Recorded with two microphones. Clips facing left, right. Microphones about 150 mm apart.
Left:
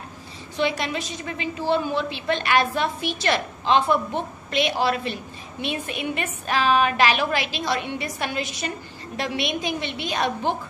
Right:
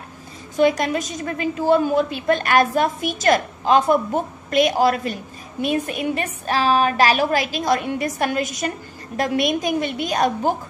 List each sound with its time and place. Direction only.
0.6 s a woman's voice: 45° right (ahead or behind)